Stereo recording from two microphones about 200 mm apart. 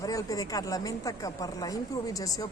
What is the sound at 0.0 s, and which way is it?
A woman's voice, 15° left (ahead or behind).